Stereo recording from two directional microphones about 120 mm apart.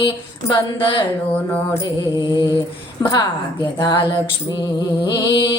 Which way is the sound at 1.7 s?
35° left (ahead or behind).